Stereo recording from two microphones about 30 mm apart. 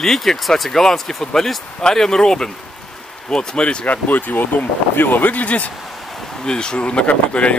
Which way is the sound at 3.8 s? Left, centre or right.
Left.